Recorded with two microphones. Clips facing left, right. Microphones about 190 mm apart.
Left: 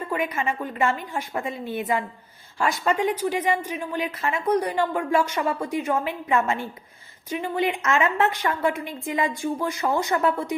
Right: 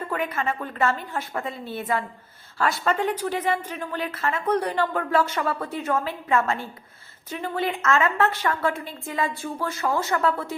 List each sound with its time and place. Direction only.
0.1 s speech: 15° left (ahead or behind)